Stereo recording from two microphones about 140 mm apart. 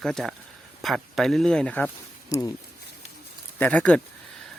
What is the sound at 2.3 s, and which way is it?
Speech, 25° left (ahead or behind).